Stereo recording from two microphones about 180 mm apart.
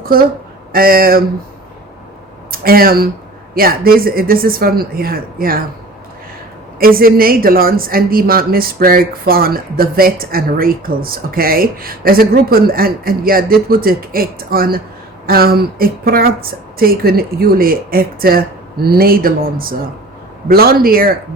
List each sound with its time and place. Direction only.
0.0 s speech: 55° right (ahead or behind)
2.5 s speech: 55° right (ahead or behind)
6.7 s speech: 55° right (ahead or behind)